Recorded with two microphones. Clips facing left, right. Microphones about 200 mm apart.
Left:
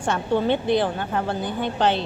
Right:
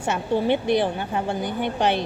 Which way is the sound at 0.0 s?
10° right (ahead or behind).